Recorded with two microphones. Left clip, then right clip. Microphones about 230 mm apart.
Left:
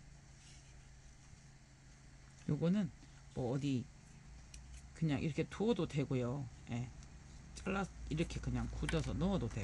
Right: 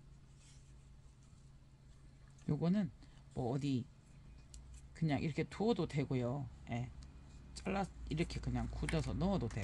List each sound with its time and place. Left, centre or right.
2.4 s speech: right
4.9 s speech: right